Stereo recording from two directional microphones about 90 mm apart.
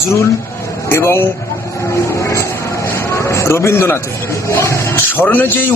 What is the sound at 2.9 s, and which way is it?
A man's voice, 30° left (ahead or behind).